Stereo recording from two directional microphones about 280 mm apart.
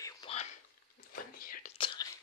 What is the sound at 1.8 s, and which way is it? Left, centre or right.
Whispering, centre.